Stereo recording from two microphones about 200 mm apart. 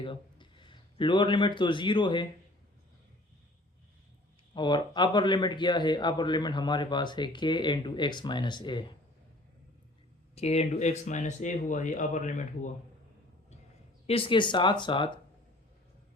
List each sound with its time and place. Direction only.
0.0 s speech: 25° left (ahead or behind)
4.5 s a man's voice: 20° left (ahead or behind)
10.3 s speech: 30° left (ahead or behind)
14.1 s a man's voice: 25° left (ahead or behind)